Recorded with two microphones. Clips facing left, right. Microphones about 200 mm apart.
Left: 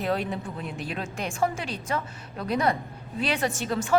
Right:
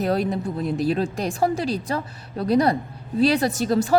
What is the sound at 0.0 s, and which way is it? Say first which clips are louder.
A woman's voice: right 6 dB; 40° right (ahead or behind).